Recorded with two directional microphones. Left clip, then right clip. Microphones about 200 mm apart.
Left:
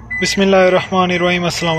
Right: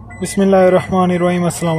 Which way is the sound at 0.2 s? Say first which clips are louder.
Even; 15° right (ahead or behind).